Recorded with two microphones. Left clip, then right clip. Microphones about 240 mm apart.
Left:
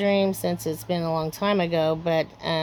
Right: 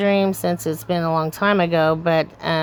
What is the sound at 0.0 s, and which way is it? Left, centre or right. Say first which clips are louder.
Speech: right 4 dB; centre.